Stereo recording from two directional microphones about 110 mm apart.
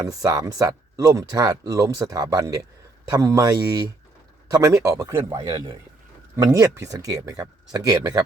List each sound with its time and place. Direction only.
0.0 s speech: 30° right (ahead or behind)